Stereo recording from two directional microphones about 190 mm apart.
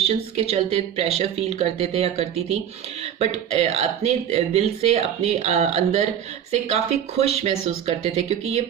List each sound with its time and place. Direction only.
0.1 s speech: 35° right (ahead or behind)